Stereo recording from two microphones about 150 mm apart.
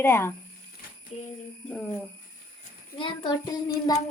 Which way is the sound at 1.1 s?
50° left (ahead or behind).